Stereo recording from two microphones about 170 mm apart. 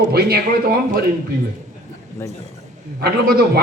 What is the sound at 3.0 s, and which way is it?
Speech, 65° right (ahead or behind).